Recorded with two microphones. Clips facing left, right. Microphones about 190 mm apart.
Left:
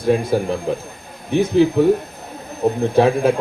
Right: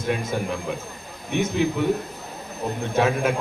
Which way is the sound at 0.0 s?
30° left (ahead or behind).